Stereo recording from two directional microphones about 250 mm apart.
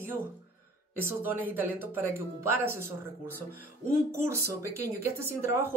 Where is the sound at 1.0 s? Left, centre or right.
Centre.